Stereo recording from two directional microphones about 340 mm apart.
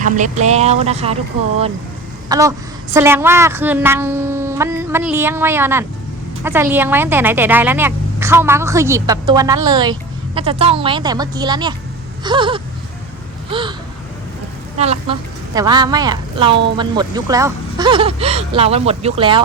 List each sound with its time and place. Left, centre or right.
0.4 s a woman's voice: centre
14.8 s a woman's voice: centre